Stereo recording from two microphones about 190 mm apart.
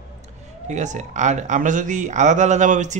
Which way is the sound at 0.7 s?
40° right (ahead or behind).